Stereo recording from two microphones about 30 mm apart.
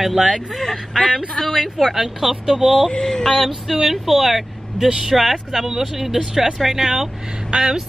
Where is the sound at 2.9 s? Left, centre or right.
Centre.